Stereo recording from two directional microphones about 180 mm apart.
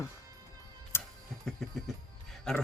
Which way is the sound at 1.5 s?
5° left (ahead or behind).